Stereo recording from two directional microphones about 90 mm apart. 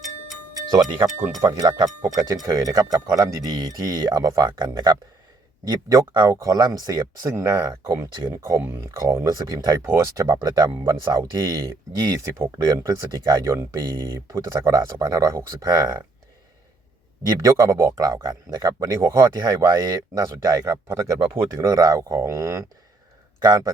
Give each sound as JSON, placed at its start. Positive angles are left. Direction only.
{"t": 0.0, "sound": "tick-tock", "side_deg": 0}
{"t": 0.6, "sound": "speech", "side_deg": -50}
{"t": 9.2, "sound": "speech", "side_deg": -45}
{"t": 9.8, "sound": "speech", "side_deg": -35}
{"t": 17.2, "sound": "speech", "side_deg": -40}
{"t": 18.9, "sound": "speech", "side_deg": -35}